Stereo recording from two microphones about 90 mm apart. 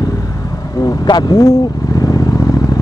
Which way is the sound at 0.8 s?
45° left (ahead or behind).